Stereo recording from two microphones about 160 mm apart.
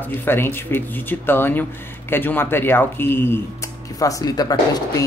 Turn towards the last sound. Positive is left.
turn(degrees=25)  # may be behind; listen again after turning